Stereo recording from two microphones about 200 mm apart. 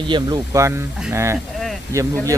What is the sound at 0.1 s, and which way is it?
Speech, 20° right (ahead or behind).